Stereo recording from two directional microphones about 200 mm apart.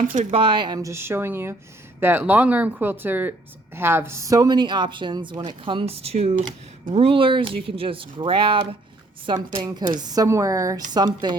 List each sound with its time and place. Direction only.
0.1 s speech: 40° right (ahead or behind)
0.3 s speech: 25° right (ahead or behind)